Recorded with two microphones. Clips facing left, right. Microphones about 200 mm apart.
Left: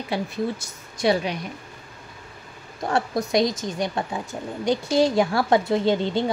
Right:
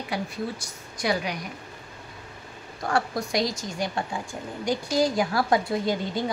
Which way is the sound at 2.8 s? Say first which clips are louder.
Left 3 dB; 20° left (ahead or behind).